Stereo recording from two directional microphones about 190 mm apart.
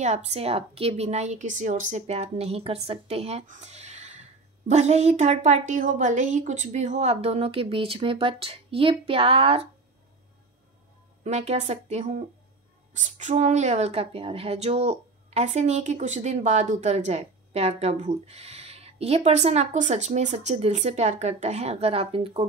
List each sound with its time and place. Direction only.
0.0 s a woman's voice: 35° right (ahead or behind)
11.2 s a woman's voice: 35° right (ahead or behind)